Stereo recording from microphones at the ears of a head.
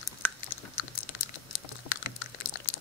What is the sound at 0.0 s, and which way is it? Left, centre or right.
Chewing, left.